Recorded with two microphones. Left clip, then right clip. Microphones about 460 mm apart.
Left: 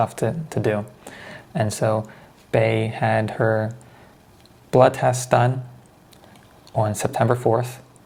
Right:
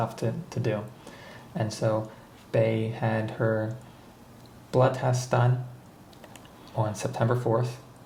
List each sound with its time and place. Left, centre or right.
0.0 s speech: left
1.8 s speech: left
4.8 s speech: left
6.7 s speech: left